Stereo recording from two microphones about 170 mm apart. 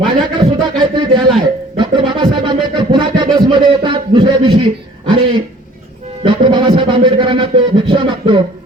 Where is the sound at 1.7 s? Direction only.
30° right (ahead or behind).